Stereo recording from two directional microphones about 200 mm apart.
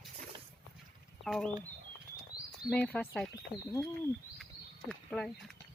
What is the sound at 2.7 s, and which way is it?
Speech, 5° left (ahead or behind).